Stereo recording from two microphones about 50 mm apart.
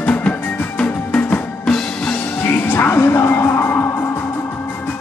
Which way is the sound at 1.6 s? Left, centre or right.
Centre.